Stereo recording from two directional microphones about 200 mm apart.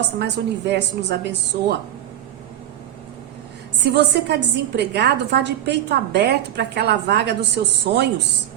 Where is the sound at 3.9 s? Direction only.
55° right (ahead or behind).